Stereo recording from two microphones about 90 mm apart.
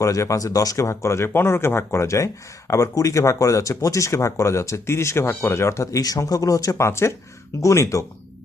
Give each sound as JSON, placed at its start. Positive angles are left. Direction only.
{"t": 0.0, "sound": "speech", "side_deg": 35}